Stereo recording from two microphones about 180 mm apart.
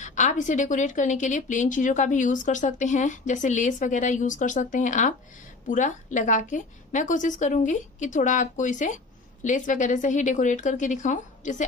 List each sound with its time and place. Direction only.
0.0 s a woman's voice: 40° left (ahead or behind)